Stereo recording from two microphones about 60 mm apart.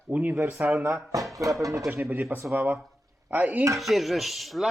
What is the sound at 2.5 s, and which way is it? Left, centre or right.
A man's voice, right.